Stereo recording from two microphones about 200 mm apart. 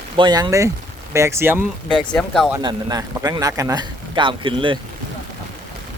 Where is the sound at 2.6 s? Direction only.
20° right (ahead or behind).